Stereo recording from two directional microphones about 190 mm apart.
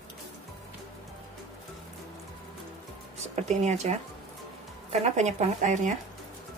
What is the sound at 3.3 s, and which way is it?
Speech, 35° right (ahead or behind).